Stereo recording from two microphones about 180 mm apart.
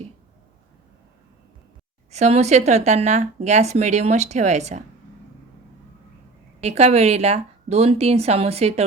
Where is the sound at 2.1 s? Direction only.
40° right (ahead or behind).